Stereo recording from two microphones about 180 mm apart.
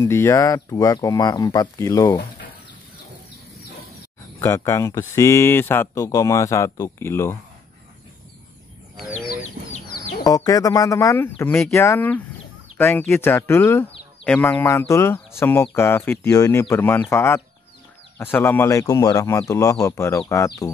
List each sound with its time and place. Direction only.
0.0 s speech: 15° left (ahead or behind)
4.4 s speech: 15° left (ahead or behind)
10.2 s speech: 20° left (ahead or behind)